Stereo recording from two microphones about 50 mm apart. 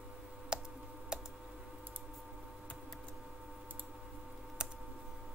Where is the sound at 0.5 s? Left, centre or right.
Centre.